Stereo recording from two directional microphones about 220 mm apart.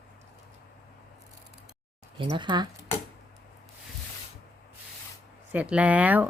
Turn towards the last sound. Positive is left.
turn(degrees=-5)  # may be behind; listen again after turning